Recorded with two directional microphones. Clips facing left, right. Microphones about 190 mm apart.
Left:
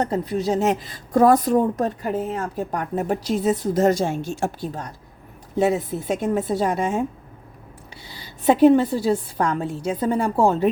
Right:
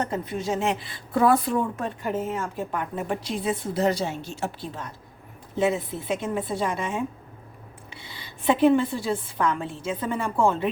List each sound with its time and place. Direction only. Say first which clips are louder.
0.0 s a woman's voice: left 5 dB; 35° left (ahead or behind)
8.0 s a woman's voice: left 5 dB; 40° left (ahead or behind)